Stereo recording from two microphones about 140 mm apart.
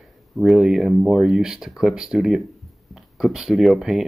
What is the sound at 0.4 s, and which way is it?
Speech, centre (ahead or behind).